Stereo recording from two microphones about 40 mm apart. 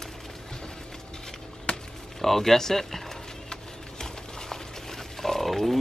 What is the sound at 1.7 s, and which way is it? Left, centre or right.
Music, left.